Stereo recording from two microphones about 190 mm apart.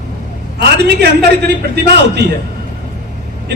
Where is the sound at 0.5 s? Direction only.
60° right (ahead or behind).